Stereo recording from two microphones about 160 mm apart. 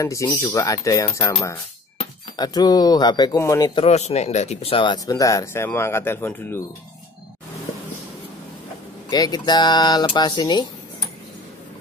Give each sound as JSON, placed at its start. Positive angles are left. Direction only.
{"t": 0.0, "sound": "speech", "side_deg": 20}
{"t": 3.8, "sound": "speech", "side_deg": 40}
{"t": 9.1, "sound": "speech", "side_deg": 25}